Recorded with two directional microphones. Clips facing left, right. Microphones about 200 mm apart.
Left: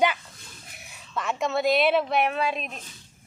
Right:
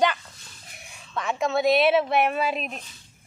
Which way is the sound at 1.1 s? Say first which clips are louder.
Right 2 dB; centre (ahead or behind).